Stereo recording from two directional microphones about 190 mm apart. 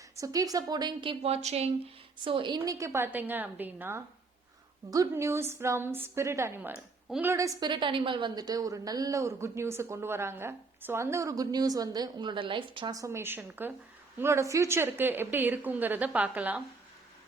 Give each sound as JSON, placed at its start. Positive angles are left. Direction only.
{"t": 0.2, "sound": "a woman's voice", "side_deg": -20}